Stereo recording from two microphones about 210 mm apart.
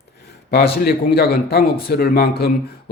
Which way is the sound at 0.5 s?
50° left (ahead or behind).